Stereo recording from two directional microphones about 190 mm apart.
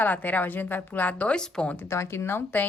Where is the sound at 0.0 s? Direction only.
10° left (ahead or behind).